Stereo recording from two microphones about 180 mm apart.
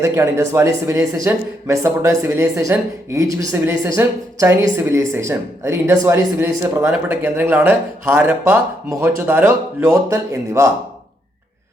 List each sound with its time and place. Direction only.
0.0 s speech: 15° right (ahead or behind)